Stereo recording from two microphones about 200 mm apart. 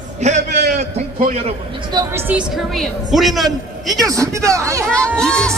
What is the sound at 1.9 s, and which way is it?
A man's voice, 10° right (ahead or behind).